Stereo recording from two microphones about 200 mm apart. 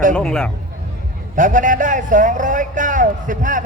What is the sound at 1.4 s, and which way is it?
A man's voice, 40° right (ahead or behind).